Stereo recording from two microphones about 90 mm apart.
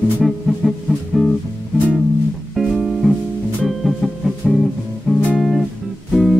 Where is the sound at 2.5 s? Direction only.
Centre (ahead or behind).